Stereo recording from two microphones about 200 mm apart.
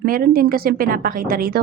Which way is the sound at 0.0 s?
45° right (ahead or behind).